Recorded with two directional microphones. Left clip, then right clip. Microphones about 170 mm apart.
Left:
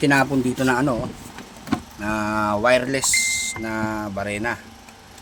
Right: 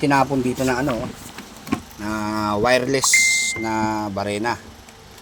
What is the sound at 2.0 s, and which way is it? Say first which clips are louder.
Speech: left 3 dB; 5° left (ahead or behind).